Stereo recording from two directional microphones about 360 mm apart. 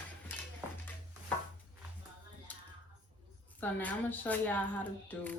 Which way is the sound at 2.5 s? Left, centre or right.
Centre.